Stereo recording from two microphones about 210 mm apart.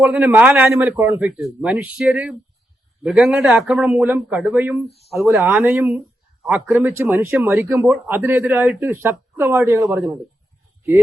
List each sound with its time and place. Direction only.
0.0 s a man's voice: 5° right (ahead or behind)